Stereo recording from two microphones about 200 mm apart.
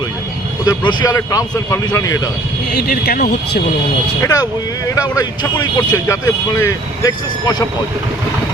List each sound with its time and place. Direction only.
0.6 s speech: 20° left (ahead or behind)
2.7 s speech: 50° left (ahead or behind)
4.2 s a man's voice: 15° left (ahead or behind)